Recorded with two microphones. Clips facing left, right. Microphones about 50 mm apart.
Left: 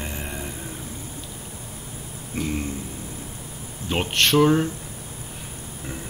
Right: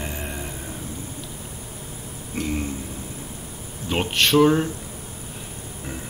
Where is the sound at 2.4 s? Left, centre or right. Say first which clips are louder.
Right 1 dB; right.